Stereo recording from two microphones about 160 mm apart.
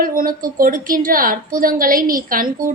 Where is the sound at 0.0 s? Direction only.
60° right (ahead or behind).